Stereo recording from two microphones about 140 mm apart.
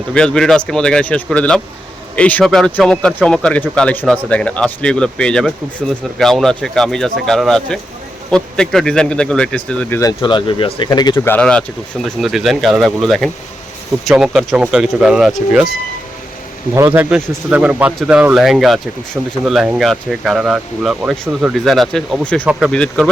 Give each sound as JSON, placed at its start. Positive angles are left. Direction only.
{"t": 0.1, "sound": "speech", "side_deg": 5}
{"t": 10.0, "sound": "speech", "side_deg": 30}
{"t": 11.3, "sound": "speech", "side_deg": 5}
{"t": 16.7, "sound": "speech", "side_deg": -15}